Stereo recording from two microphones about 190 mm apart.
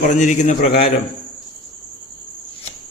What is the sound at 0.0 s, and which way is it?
Speech, 40° left (ahead or behind).